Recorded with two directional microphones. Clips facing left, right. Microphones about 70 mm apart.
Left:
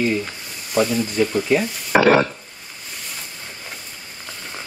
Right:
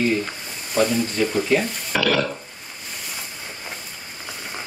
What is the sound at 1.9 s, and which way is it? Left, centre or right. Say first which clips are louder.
Stir: left 7 dB; left.